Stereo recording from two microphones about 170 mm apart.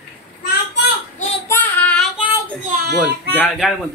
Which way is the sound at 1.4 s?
10° left (ahead or behind).